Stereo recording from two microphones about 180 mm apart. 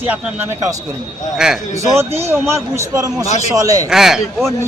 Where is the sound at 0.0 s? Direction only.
10° right (ahead or behind).